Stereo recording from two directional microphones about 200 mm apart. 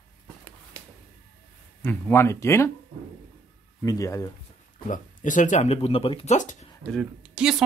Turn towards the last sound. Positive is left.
turn(degrees=-5)  # may be behind; listen again after turning